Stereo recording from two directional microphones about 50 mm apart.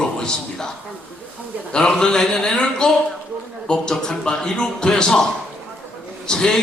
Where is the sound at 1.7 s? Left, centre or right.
Centre.